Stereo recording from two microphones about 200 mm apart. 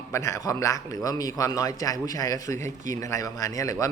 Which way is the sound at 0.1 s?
15° left (ahead or behind).